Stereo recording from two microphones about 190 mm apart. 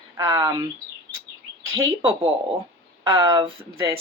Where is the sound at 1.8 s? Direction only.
25° right (ahead or behind).